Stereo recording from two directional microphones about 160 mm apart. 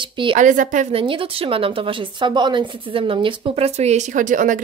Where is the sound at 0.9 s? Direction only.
35° right (ahead or behind).